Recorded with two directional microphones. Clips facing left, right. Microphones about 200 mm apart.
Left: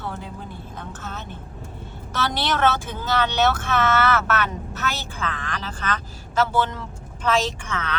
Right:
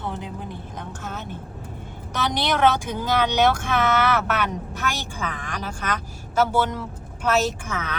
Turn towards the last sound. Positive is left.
turn(degrees=-10)  # may be behind; listen again after turning